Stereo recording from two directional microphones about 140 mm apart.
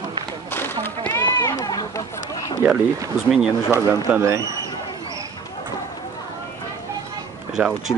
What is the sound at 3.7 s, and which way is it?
Speech, 20° right (ahead or behind).